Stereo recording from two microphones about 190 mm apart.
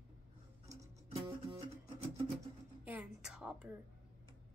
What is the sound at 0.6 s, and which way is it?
Music, 30° right (ahead or behind).